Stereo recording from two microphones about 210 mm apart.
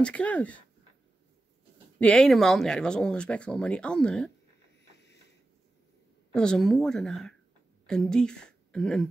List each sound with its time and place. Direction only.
0.0 s speech: 5° left (ahead or behind)
2.0 s speech: 5° left (ahead or behind)
4.9 s a sound: 55° left (ahead or behind)
6.3 s a woman's voice: 5° left (ahead or behind)